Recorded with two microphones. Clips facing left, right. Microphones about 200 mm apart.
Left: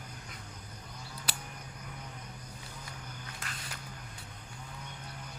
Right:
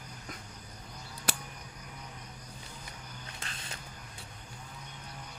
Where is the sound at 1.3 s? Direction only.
50° right (ahead or behind).